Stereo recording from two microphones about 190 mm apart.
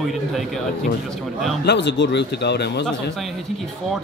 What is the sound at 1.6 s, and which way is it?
Speech, 65° left (ahead or behind).